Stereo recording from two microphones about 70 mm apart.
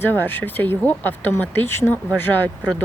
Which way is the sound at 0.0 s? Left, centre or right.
Left.